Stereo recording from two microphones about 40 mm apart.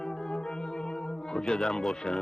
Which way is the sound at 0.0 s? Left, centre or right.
Centre.